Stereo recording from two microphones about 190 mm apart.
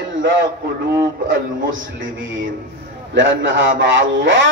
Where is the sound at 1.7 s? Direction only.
90° right.